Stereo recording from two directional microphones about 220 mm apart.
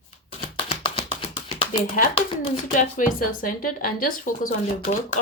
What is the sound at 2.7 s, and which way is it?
A woman's voice, 40° left (ahead or behind).